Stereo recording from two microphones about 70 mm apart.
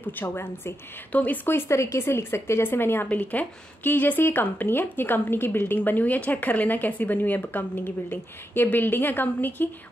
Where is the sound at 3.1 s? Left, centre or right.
Left.